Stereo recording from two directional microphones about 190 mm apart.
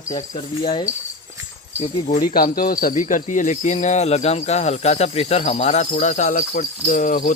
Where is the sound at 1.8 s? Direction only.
30° left (ahead or behind).